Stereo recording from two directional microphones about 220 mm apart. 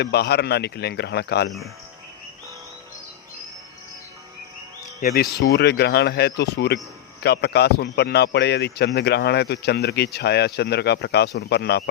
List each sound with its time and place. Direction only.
0.0 s a man's voice: 45° left (ahead or behind)
1.5 s speech: centre (ahead or behind)
4.9 s a man's voice: 45° left (ahead or behind)